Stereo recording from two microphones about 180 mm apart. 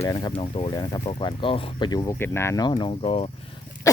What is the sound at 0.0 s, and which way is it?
Speech, 25° left (ahead or behind).